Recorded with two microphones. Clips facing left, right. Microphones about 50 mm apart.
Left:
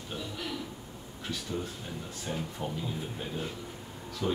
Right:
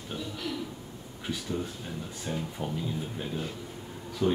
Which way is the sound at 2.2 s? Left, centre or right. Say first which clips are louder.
Right 1 dB; centre.